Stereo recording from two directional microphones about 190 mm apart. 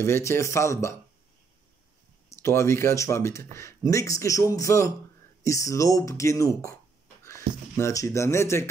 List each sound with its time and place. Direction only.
0.0 s a man's voice: 15° left (ahead or behind)
2.2 s a man's voice: 15° left (ahead or behind)